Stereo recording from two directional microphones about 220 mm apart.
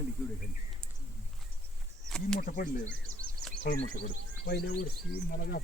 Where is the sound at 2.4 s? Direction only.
40° left (ahead or behind).